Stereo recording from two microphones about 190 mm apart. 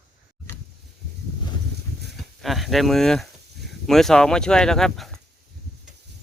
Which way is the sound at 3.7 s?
Centre (ahead or behind).